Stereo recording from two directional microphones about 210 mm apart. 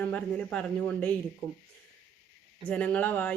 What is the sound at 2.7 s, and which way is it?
Speech, 5° left (ahead or behind).